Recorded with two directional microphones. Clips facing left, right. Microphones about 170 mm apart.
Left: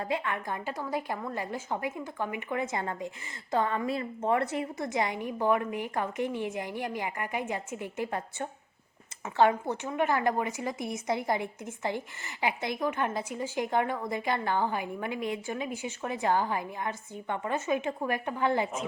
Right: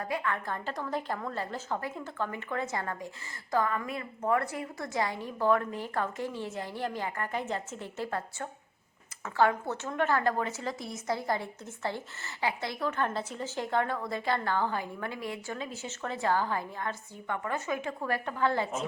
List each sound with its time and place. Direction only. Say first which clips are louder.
0.0 s a woman's voice: left 1 dB; 25° left (ahead or behind)